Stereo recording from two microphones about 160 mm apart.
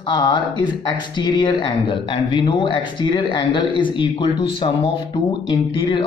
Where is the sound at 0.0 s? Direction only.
30° left (ahead or behind).